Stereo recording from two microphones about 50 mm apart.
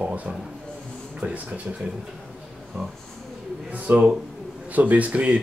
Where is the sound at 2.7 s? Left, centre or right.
Right.